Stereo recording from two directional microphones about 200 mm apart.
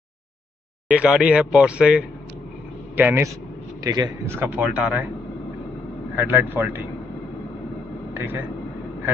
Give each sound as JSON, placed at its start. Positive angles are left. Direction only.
{"t": 0.8, "sound": "a man's voice", "side_deg": -5}
{"t": 4.5, "sound": "speech", "side_deg": -5}
{"t": 6.1, "sound": "speech", "side_deg": -10}
{"t": 8.1, "sound": "speech", "side_deg": -10}